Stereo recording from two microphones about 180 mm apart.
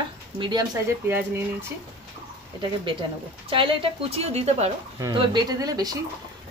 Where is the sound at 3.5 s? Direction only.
30° right (ahead or behind).